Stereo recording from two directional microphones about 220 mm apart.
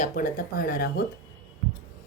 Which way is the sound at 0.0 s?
40° left (ahead or behind).